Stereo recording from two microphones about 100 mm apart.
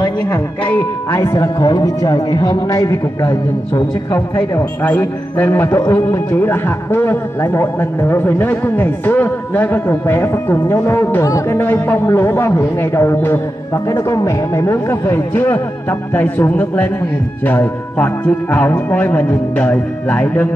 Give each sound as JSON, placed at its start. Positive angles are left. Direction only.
{"t": 1.1, "sound": "a man's voice", "side_deg": 30}
{"t": 4.1, "sound": "a man's voice", "side_deg": 20}
{"t": 11.2, "sound": "a man's voice", "side_deg": 35}
{"t": 11.5, "sound": "a man's voice", "side_deg": 20}